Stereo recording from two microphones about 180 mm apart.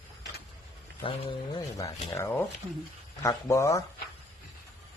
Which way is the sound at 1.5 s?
20° left (ahead or behind).